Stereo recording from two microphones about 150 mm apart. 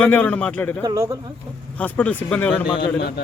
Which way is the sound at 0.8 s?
25° right (ahead or behind).